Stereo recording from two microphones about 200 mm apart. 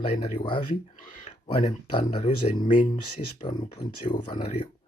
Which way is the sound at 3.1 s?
20° left (ahead or behind).